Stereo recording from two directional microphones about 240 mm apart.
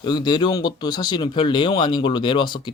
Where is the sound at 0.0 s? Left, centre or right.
Centre.